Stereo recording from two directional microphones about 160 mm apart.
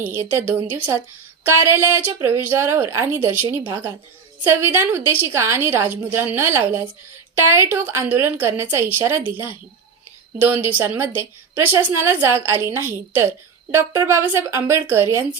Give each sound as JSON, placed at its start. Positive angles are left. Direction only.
{"t": 0.0, "sound": "a woman's voice", "side_deg": -10}